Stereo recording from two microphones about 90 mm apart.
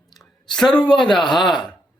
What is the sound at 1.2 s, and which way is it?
Speech, 60° left (ahead or behind).